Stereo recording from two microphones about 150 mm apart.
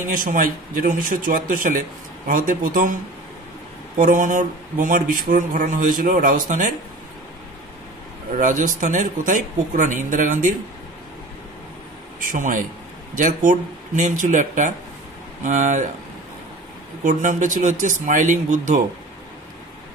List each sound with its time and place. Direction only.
0.0 s speech: 65° right (ahead or behind)
4.0 s speech: 60° right (ahead or behind)
8.4 s speech: 60° right (ahead or behind)
12.2 s a man's voice: 60° right (ahead or behind)
17.0 s speech: 55° right (ahead or behind)